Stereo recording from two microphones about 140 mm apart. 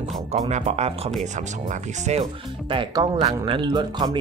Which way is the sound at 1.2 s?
60° right (ahead or behind).